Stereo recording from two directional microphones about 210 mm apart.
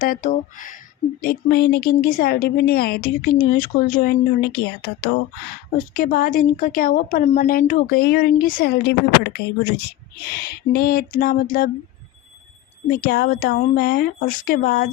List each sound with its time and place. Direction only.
0.0 s a woman's voice: 40° left (ahead or behind)
10.3 s a woman's voice: 45° left (ahead or behind)
12.9 s a woman's voice: 45° left (ahead or behind)